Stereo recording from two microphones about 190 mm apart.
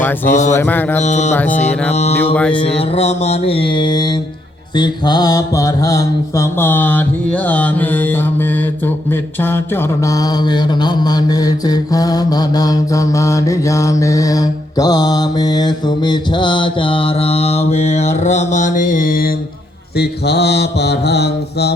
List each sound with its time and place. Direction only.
0.3 s mantra: 40° left (ahead or behind)
0.5 s mantra: 10° left (ahead or behind)
0.9 s mantra: 35° left (ahead or behind)
2.1 s mantra: 10° left (ahead or behind)
2.6 s mantra: 30° left (ahead or behind); by 19.3 s 50° left (ahead or behind)
20.0 s mantra: 60° left (ahead or behind)